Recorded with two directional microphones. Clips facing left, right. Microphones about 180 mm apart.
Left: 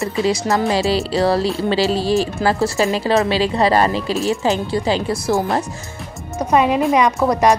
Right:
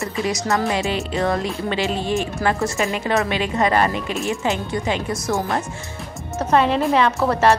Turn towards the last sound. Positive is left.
turn(degrees=15)  # may be behind; listen again after turning